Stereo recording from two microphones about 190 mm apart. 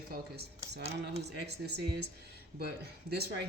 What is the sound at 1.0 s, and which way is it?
A woman's voice, 60° right (ahead or behind).